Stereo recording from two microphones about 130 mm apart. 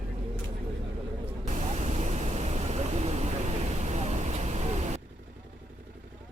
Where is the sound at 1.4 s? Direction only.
70° right (ahead or behind).